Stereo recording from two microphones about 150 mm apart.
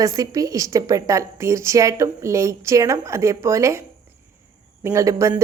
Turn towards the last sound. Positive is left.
turn(degrees=-20)  # may be behind; listen again after turning